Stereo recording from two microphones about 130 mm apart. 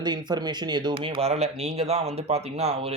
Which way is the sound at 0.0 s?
35° right (ahead or behind).